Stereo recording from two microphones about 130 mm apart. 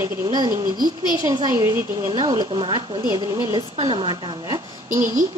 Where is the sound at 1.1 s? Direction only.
30° right (ahead or behind).